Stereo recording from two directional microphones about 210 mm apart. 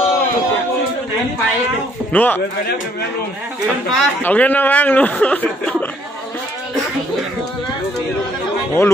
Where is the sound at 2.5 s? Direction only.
45° left (ahead or behind).